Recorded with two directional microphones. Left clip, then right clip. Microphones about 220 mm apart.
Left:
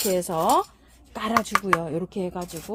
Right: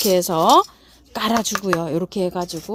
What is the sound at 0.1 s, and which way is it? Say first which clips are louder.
Speech: right 7 dB; 40° right (ahead or behind).